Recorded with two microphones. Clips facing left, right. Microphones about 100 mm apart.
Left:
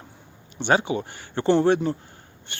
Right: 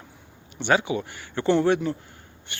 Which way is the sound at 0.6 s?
30° left (ahead or behind).